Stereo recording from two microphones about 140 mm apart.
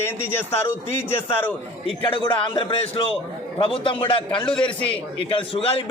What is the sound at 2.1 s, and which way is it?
A man's voice, 40° left (ahead or behind).